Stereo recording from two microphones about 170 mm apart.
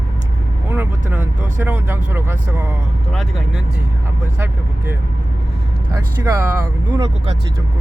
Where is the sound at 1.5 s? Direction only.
10° right (ahead or behind).